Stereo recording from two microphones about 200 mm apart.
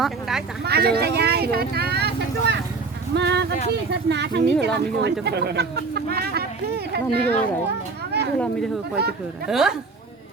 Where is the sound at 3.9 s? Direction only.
60° right (ahead or behind).